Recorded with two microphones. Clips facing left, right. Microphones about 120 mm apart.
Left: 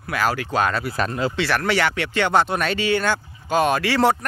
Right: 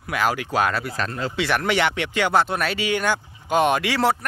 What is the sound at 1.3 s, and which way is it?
Speech, 15° right (ahead or behind).